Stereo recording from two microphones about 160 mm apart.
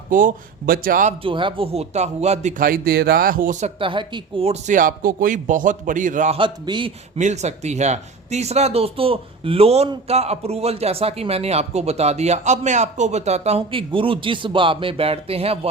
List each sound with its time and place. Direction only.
0.1 s speech: 55° right (ahead or behind)
1.2 s speech: 30° right (ahead or behind); by 3.7 s 55° right (ahead or behind)
3.8 s speech: 30° right (ahead or behind); by 6.3 s 50° right (ahead or behind)
6.3 s a man's voice: 30° right (ahead or behind)
7.2 s a man's voice: 45° right (ahead or behind)